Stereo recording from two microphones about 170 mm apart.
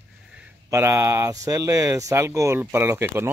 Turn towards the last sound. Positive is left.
turn(degrees=-15)  # may be behind; listen again after turning